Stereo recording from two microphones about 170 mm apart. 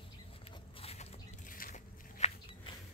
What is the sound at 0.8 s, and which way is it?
Biting, 35° left (ahead or behind).